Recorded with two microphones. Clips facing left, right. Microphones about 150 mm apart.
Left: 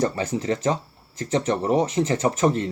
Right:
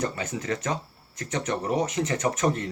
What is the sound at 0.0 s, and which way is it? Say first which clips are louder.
Speech: left 6 dB; 30° left (ahead or behind).